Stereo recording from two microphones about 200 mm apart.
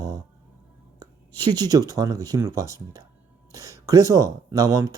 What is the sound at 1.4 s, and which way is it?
Speech, 20° right (ahead or behind).